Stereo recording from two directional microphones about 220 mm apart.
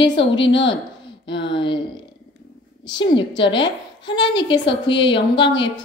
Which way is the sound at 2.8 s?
20° left (ahead or behind).